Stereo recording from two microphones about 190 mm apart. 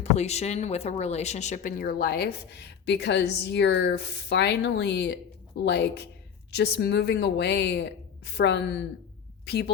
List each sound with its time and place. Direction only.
0.0 s speech: 35° left (ahead or behind); by 9.7 s 60° left (ahead or behind)